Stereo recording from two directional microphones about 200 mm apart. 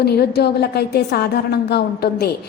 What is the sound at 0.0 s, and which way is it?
A woman's voice, 55° left (ahead or behind).